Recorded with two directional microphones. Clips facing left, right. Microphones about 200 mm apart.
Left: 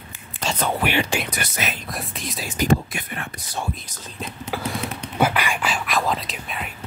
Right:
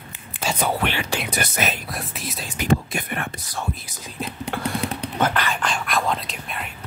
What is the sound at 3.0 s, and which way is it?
Speech, 55° right (ahead or behind).